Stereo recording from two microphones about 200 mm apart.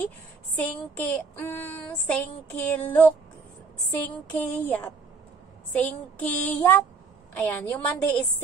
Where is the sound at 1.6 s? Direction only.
5° left (ahead or behind).